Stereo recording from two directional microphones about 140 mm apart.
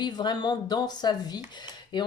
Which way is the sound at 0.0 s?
30° left (ahead or behind).